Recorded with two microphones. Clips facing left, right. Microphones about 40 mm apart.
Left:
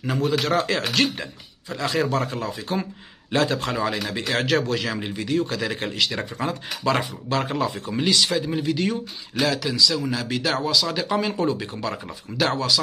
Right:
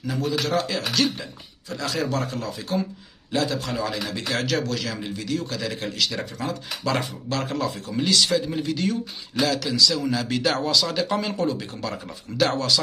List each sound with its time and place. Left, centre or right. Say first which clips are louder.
0.0 s speech: left 3 dB; left
1.7 s speech: left 3 dB; centre
3.3 s a man's voice: left 3 dB; left; by 8.9 s centre
8.9 s speech: even; centre